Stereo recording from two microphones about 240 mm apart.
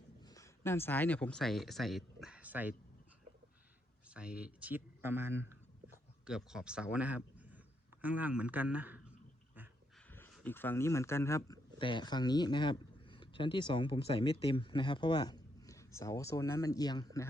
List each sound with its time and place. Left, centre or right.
0.2 s speech: centre
4.1 s a man's voice: centre
10.1 s speech: centre